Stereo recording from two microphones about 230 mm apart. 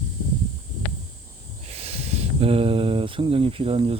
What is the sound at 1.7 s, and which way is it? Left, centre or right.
Speech, right.